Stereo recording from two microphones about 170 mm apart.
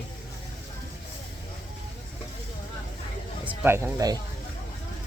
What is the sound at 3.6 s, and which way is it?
Speech, 15° right (ahead or behind).